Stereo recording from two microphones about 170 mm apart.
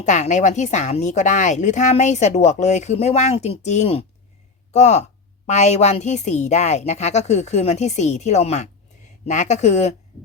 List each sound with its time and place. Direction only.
0.0 s a woman's voice: 45° left (ahead or behind)